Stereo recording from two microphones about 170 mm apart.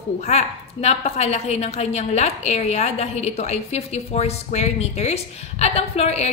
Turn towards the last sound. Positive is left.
turn(degrees=40)  # may be behind; listen again after turning